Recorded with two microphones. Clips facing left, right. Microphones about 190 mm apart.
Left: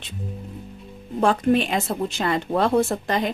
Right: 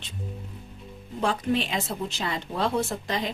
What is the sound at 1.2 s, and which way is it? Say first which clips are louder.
A woman's voice: left 7 dB; 55° left (ahead or behind).